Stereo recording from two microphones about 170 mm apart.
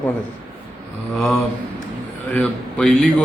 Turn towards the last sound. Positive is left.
turn(degrees=5)  # may be behind; listen again after turning